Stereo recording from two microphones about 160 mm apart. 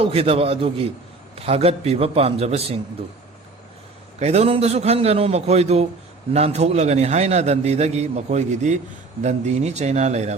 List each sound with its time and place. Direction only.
0.0 s a man's voice: 35° right (ahead or behind)
4.2 s a man's voice: 40° right (ahead or behind)